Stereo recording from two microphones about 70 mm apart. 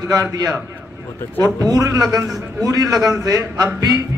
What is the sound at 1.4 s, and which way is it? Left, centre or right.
A man's voice, right.